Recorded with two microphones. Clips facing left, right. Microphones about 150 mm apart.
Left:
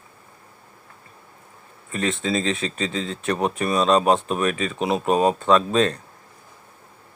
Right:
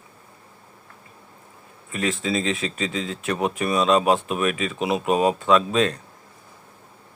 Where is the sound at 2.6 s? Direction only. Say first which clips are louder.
Left 1 dB; 40° left (ahead or behind).